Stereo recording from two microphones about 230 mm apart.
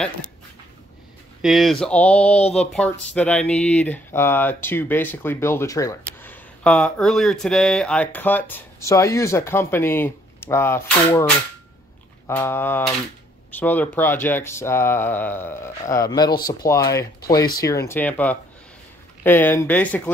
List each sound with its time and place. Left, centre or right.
1.4 s speech: centre
2.4 s speech: left
2.7 s speech: centre
12.3 s speech: centre